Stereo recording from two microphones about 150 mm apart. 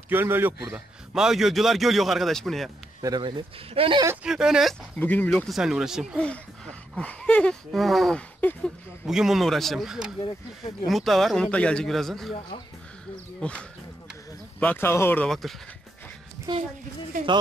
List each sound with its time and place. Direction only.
0.1 s a man's voice: 15° right (ahead or behind); by 2.7 s centre (ahead or behind)
3.0 s speech: 30° right (ahead or behind)
4.2 s a man's voice: 5° right (ahead or behind)
4.9 s speech: 10° left (ahead or behind)
5.5 s a man's voice: 5° right (ahead or behind)
9.0 s a man's voice: 5° right (ahead or behind)
13.4 s speech: 5° left (ahead or behind)
16.5 s a woman's voice: 30° right (ahead or behind)